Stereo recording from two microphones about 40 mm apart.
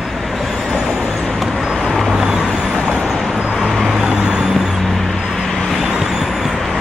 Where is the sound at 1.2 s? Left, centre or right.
Centre.